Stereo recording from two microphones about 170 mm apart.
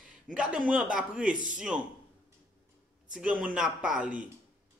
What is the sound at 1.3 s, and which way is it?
Speech, 50° right (ahead or behind).